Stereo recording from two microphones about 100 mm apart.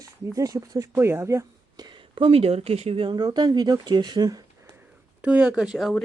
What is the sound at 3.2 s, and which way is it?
Speech, 45° right (ahead or behind).